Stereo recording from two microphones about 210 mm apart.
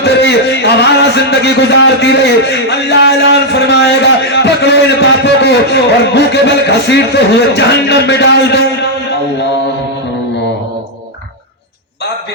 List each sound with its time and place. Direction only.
0.0 s a man's voice: 50° left (ahead or behind)